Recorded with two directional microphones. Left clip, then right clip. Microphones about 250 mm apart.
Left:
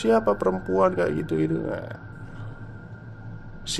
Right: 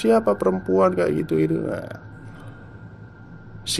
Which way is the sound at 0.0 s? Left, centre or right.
Centre.